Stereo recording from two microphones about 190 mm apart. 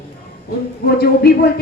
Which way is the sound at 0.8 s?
55° left (ahead or behind).